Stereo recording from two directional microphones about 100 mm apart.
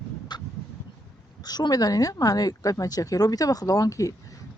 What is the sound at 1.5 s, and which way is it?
Speech, 40° left (ahead or behind).